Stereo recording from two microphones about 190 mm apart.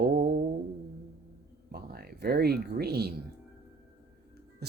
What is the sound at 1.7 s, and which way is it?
Speech, 55° right (ahead or behind).